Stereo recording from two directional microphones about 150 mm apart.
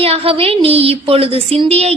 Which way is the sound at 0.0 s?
40° right (ahead or behind).